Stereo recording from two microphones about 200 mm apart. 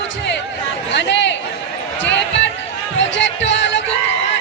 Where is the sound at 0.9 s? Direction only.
65° left (ahead or behind).